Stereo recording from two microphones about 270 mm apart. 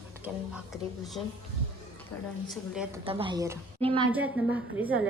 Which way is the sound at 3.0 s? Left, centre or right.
Centre.